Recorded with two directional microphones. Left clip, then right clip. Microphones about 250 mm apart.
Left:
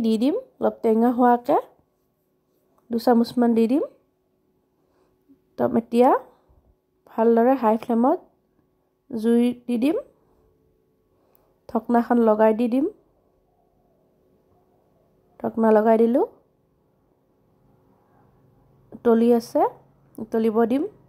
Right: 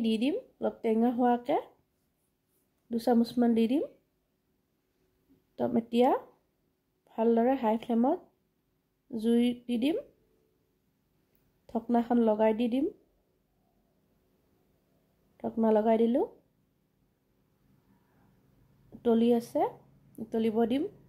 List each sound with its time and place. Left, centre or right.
0.0 s speech: left
2.9 s speech: left
5.6 s speech: left
11.6 s speech: left
15.3 s speech: centre
18.9 s speech: left